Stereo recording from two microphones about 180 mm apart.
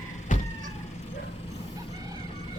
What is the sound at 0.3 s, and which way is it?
Vehicle, 45° left (ahead or behind).